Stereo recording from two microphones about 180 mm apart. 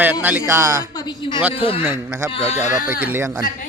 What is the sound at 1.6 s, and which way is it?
Speech, 30° left (ahead or behind).